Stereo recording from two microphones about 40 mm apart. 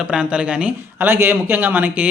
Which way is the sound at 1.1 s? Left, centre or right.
Right.